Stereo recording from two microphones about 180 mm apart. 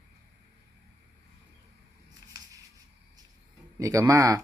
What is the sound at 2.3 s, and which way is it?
Scissors, 20° right (ahead or behind).